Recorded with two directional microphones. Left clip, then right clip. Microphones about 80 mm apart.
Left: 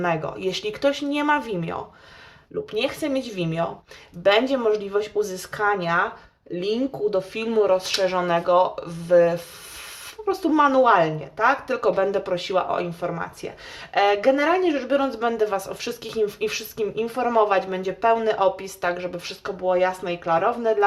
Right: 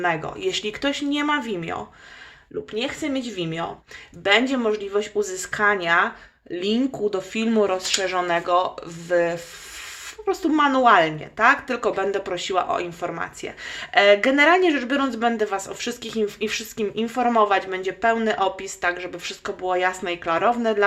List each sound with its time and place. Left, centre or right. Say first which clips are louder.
0.0 s speech: right 1 dB; right
1.5 s speech: even; right
2.7 s speech: left 2 dB; centre
10.8 s speech: right 1 dB; right
15.3 s speech: left 1 dB; centre
19.6 s speech: left 1 dB; right